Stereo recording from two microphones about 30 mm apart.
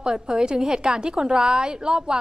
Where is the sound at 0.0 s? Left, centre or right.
Centre.